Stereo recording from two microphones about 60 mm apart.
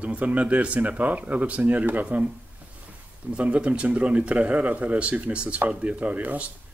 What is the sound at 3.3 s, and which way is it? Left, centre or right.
Speech, centre.